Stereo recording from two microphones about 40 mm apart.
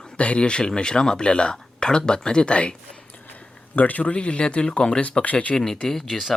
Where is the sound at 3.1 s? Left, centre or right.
Left.